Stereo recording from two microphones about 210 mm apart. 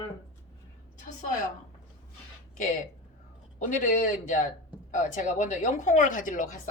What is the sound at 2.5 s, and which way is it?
Speech, 35° left (ahead or behind).